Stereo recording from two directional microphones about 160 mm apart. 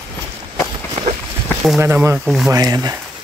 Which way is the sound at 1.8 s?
15° right (ahead or behind).